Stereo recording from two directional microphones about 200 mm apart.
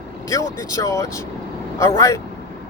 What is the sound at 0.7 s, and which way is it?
A man's voice, 15° left (ahead or behind).